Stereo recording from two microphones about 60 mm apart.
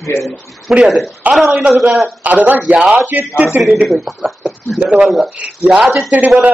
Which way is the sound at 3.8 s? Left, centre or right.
Centre.